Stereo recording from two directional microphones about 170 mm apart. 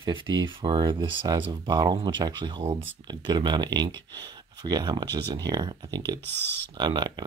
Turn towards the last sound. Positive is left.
turn(degrees=-25)  # may be behind; listen again after turning